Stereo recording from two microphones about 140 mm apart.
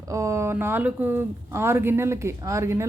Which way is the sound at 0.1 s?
20° right (ahead or behind).